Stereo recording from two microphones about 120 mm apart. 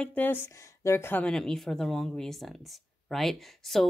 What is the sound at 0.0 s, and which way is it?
A woman's voice, 15° left (ahead or behind).